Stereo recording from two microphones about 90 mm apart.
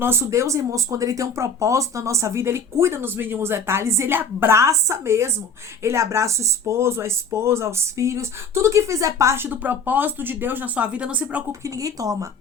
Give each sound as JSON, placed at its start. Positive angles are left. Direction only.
{"t": 0.0, "sound": "speech", "side_deg": -30}
{"t": 11.6, "sound": "speech", "side_deg": -40}